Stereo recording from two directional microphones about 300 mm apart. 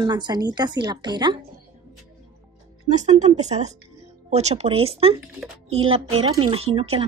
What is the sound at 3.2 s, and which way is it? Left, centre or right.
Speech, right.